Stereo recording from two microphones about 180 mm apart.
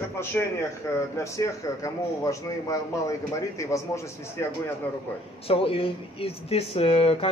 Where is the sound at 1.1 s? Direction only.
15° left (ahead or behind).